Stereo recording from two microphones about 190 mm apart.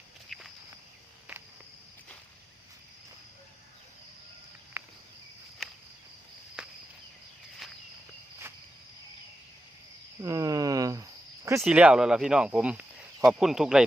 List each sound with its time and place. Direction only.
0.3 s walk: centre (ahead or behind)
6.6 s cricket: 5° right (ahead or behind)
10.2 s cricket: 15° right (ahead or behind)
11.6 s speech: 5° right (ahead or behind)